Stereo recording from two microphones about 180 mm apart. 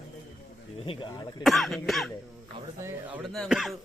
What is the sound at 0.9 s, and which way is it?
Speech, 30° left (ahead or behind).